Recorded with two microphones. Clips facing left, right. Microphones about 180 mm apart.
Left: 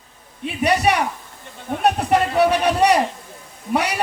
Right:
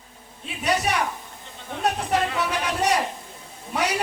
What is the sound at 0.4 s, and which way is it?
Speech, 65° left (ahead or behind).